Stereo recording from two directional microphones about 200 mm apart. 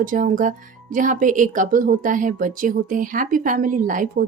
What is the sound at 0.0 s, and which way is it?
Speech, 40° right (ahead or behind).